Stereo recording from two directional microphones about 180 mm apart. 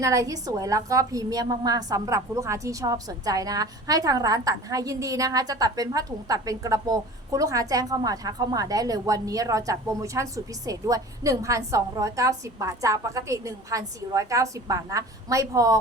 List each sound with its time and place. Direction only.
0.0 s a woman's voice: 20° right (ahead or behind)